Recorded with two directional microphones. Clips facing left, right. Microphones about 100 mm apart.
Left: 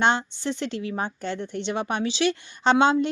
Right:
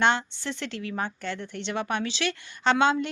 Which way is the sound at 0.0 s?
20° left (ahead or behind).